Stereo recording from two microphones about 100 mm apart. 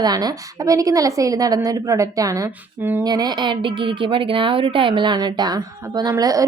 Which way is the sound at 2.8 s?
20° right (ahead or behind).